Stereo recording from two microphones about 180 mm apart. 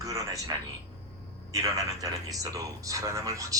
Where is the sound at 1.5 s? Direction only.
20° right (ahead or behind).